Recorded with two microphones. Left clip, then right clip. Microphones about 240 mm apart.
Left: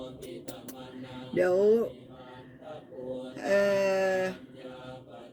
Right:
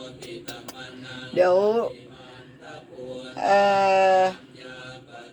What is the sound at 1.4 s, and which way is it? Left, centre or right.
Speech, right.